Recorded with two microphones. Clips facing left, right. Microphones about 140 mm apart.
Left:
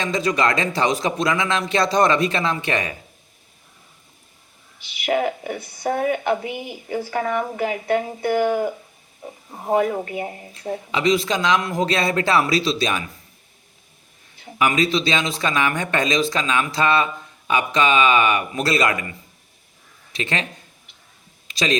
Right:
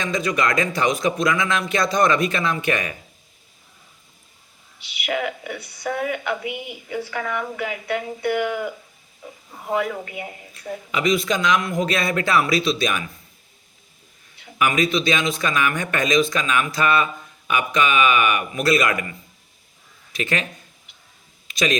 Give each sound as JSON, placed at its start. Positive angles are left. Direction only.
{"t": 0.0, "sound": "speech", "side_deg": 35}
{"t": 5.0, "sound": "speech", "side_deg": 35}
{"t": 14.4, "sound": "speech", "side_deg": 30}
{"t": 20.1, "sound": "speech", "side_deg": 30}
{"t": 21.4, "sound": "a sound", "side_deg": 30}